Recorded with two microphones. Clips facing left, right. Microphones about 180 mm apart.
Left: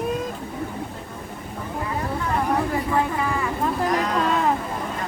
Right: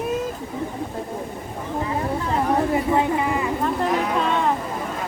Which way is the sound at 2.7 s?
20° right (ahead or behind).